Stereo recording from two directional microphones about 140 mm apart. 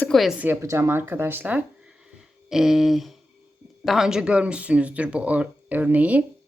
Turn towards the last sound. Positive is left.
turn(degrees=-10)  # may be behind; listen again after turning